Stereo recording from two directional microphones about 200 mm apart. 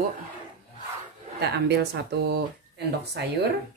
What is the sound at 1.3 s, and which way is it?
Speech, 55° right (ahead or behind).